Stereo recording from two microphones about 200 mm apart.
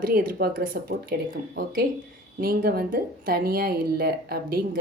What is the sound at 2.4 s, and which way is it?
Speech, 45° right (ahead or behind).